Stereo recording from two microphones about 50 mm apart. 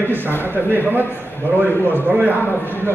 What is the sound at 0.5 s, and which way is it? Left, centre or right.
A man's voice, right.